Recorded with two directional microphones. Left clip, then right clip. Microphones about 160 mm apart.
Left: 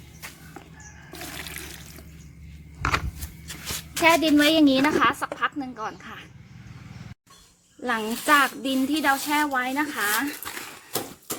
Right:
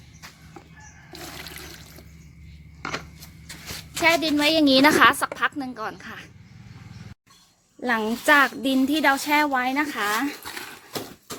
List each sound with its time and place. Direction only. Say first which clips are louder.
1.3 s toilet flush: left 2 dB; 15° right (ahead or behind)
3.9 s a woman's voice: left 2 dB; centre (ahead or behind)
4.8 s a woman's voice: right 5 dB; 40° right (ahead or behind)
7.8 s a woman's voice: right 3 dB; 40° right (ahead or behind); by 10.3 s 55° right (ahead or behind)